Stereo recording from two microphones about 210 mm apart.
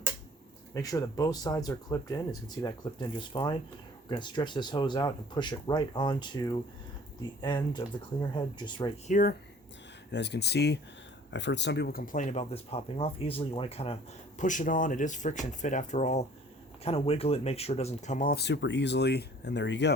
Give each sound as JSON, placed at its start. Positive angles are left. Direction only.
{"t": 0.7, "sound": "speech", "side_deg": 15}
{"t": 9.0, "sound": "speech", "side_deg": 40}
{"t": 10.1, "sound": "speech", "side_deg": 55}